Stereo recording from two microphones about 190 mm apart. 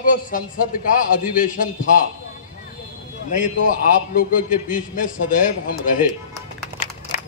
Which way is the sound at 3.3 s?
45° left (ahead or behind).